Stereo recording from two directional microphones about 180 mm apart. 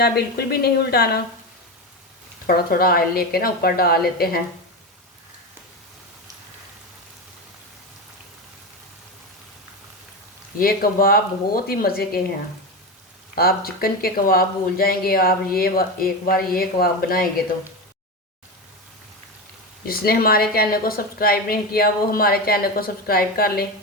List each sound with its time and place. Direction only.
0.0 s speech: 60° left (ahead or behind)
2.5 s speech: 55° left (ahead or behind)
10.6 s speech: 55° left (ahead or behind)
13.3 s speech: 55° left (ahead or behind)
19.8 s speech: 55° left (ahead or behind)